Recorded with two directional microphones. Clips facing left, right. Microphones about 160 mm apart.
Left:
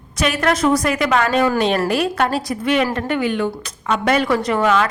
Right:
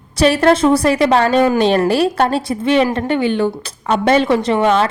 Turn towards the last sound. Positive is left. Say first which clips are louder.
# right 3 dB
turn(degrees=-30)  # may be behind; listen again after turning